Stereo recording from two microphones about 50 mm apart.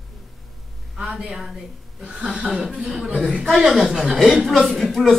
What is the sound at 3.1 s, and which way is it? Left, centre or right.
Speech, right.